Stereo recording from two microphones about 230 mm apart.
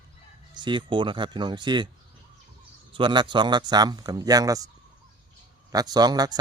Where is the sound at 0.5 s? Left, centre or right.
Centre.